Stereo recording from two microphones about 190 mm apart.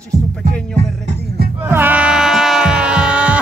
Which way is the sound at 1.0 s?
55° right (ahead or behind).